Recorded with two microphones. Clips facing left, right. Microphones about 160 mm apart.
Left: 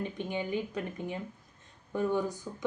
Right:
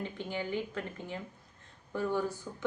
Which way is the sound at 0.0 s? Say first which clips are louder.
Left 2 dB; 15° left (ahead or behind).